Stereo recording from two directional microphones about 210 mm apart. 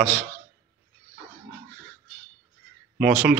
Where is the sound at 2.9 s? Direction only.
5° right (ahead or behind).